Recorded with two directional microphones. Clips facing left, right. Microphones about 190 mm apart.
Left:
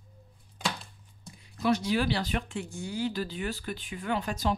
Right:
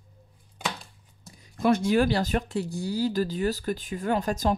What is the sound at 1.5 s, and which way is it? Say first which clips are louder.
Speech: right 5 dB; 50° right (ahead or behind).